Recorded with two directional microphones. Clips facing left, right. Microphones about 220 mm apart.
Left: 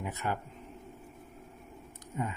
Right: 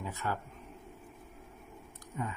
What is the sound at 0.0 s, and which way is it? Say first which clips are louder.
Speech: left 2 dB; 20° left (ahead or behind).